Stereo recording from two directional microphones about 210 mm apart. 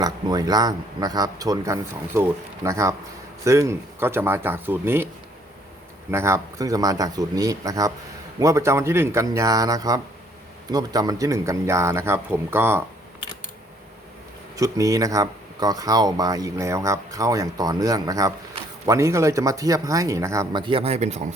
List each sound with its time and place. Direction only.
0.0 s speech: 20° right (ahead or behind)
6.1 s speech: 10° right (ahead or behind)
14.5 s speech: 15° right (ahead or behind); by 21.2 s 30° right (ahead or behind)